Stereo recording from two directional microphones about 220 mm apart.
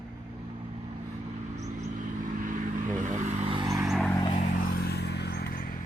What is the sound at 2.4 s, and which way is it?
Vehicle, 35° right (ahead or behind).